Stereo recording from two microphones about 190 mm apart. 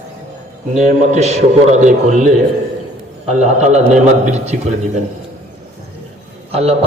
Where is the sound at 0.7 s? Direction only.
40° right (ahead or behind).